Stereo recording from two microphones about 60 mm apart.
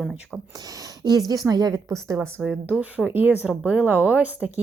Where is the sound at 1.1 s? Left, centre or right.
Right.